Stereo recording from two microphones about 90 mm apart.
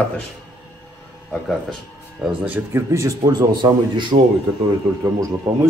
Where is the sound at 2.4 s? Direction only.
20° right (ahead or behind).